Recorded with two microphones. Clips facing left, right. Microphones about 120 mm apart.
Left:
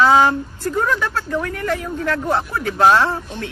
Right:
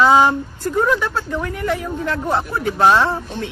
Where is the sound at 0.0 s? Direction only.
5° right (ahead or behind).